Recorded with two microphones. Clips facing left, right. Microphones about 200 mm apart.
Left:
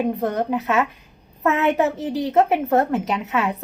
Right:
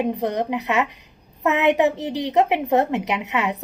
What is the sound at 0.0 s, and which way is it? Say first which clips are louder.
A woman's voice: left 1 dB; 15° right (ahead or behind).